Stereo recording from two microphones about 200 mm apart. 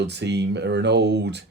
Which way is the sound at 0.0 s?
60° right (ahead or behind).